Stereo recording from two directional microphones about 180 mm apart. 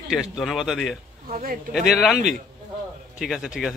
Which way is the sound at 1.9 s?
5° right (ahead or behind).